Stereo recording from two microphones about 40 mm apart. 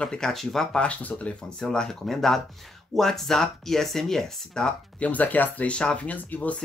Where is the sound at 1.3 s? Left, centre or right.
Centre.